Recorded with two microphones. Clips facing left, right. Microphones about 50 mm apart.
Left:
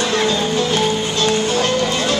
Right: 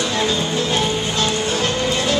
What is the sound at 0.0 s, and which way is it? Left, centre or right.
Music, left.